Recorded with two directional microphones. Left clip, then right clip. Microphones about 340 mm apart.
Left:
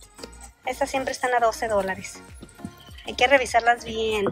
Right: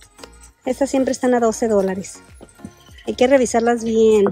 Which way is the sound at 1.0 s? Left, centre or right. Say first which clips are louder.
Right 3 dB; right.